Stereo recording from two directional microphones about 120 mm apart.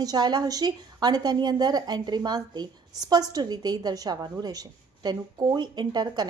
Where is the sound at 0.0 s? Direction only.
35° right (ahead or behind).